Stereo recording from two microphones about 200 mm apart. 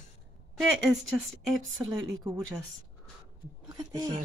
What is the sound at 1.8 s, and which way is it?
Speech, 20° right (ahead or behind).